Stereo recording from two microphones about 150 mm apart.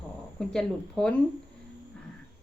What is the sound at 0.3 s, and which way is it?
Speech, 5° left (ahead or behind).